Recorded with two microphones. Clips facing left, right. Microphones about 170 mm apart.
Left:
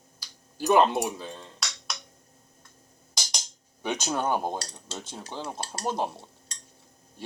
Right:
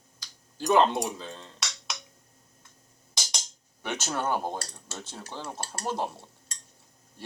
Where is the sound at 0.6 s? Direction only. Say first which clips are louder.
Left 1 dB; 5° left (ahead or behind).